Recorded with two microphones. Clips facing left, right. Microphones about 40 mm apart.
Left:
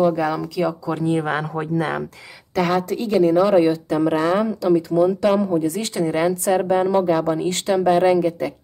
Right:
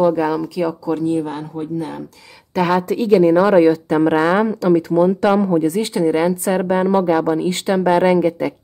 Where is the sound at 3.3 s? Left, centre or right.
Right.